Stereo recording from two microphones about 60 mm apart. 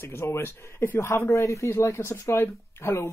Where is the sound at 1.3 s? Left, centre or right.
Left.